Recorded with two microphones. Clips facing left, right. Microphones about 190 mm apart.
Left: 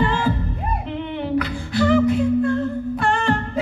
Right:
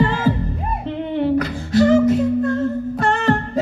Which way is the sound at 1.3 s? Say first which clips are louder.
Right 1 dB; 40° right (ahead or behind).